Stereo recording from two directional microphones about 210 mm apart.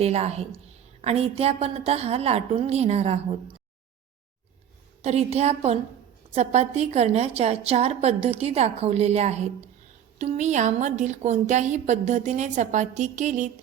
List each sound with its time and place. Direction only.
0.0 s a woman's voice: 30° right (ahead or behind)
5.0 s a woman's voice: 30° right (ahead or behind)